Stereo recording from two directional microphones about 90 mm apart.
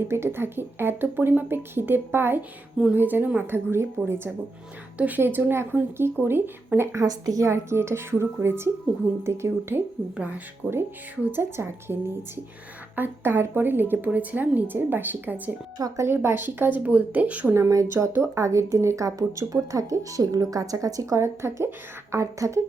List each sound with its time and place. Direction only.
0.0 s speech: 30° right (ahead or behind)
10.2 s speech: 15° right (ahead or behind)
15.8 s speech: 30° right (ahead or behind)
17.5 s a woman's voice: 35° right (ahead or behind)